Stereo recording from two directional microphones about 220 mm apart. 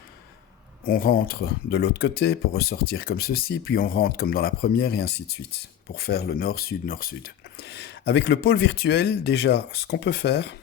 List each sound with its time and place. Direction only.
0.9 s speech: 40° left (ahead or behind)